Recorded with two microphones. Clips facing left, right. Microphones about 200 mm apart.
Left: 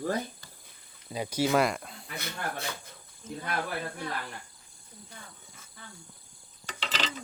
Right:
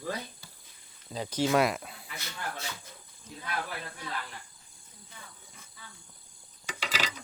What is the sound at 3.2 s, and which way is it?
Speech, 50° left (ahead or behind).